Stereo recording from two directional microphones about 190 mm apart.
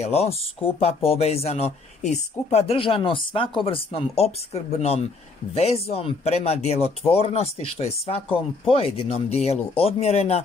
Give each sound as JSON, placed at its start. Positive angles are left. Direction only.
{"t": 0.0, "sound": "speech", "side_deg": 35}